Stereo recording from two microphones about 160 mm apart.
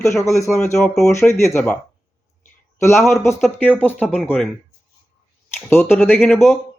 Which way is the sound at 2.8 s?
15° left (ahead or behind).